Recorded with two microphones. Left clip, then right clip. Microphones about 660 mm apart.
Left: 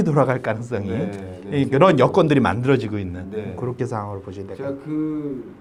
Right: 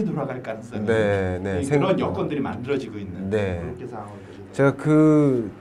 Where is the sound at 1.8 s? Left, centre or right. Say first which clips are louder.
Left 8 dB; left.